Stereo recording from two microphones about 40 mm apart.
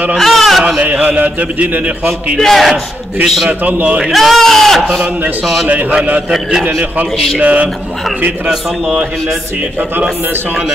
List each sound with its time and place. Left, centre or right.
0.2 s bleat: centre
1.0 s a man's voice: right
2.3 s speech: centre
3.4 s a man's voice: right
4.0 s speech: centre
5.7 s a man's voice: right
7.4 s a man's voice: right
8.5 s a man's voice: centre